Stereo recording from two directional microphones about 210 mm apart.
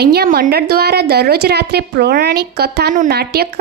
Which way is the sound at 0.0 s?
50° right (ahead or behind).